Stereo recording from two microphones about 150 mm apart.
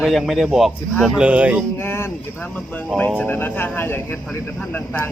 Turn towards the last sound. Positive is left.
turn(degrees=10)  # may be behind; listen again after turning